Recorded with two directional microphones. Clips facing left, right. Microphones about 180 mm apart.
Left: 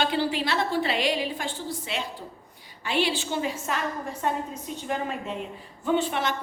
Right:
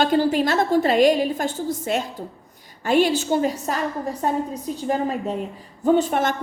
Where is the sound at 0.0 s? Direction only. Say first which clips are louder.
Right 7 dB; 45° right (ahead or behind).